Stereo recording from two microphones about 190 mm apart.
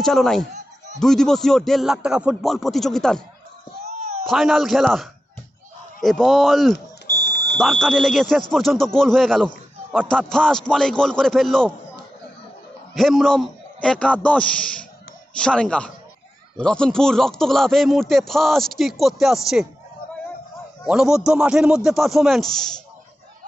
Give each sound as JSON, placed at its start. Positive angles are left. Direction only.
{"t": 0.0, "sound": "speech", "side_deg": 0}
{"t": 3.8, "sound": "a sound", "side_deg": -35}
{"t": 4.3, "sound": "speech", "side_deg": 0}
{"t": 12.9, "sound": "speech", "side_deg": 0}
{"t": 20.8, "sound": "speech", "side_deg": -5}